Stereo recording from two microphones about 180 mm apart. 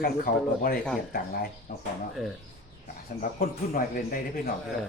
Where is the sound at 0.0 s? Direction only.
55° left (ahead or behind).